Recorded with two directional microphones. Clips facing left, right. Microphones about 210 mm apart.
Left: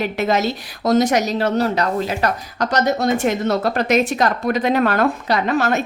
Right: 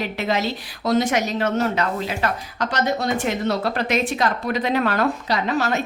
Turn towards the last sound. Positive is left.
turn(degrees=55)  # may be behind; listen again after turning